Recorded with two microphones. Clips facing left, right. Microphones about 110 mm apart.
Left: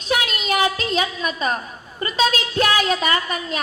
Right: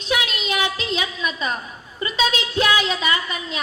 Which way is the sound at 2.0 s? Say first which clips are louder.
Left 2 dB; 40° left (ahead or behind).